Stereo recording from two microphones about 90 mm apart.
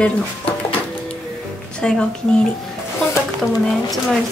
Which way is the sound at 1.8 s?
10° left (ahead or behind).